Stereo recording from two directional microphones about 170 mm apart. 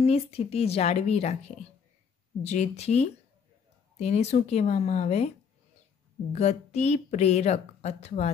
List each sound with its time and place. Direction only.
0.0 s speech: 35° left (ahead or behind)
6.3 s speech: 40° left (ahead or behind)